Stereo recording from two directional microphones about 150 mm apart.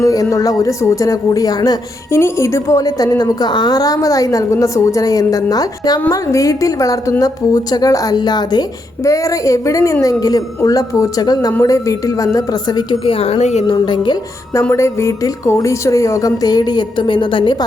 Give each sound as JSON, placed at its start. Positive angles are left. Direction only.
{"t": 0.0, "sound": "speech", "side_deg": 20}
{"t": 13.7, "sound": "speech", "side_deg": 30}
{"t": 14.7, "sound": "speech", "side_deg": 20}